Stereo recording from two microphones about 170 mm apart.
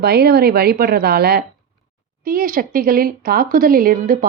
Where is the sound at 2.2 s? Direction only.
55° right (ahead or behind).